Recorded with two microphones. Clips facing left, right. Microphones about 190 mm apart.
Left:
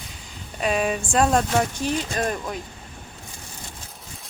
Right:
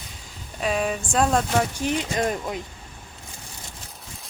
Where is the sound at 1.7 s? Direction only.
15° right (ahead or behind).